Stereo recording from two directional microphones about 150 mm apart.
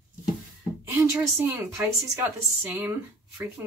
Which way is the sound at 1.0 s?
15° right (ahead or behind).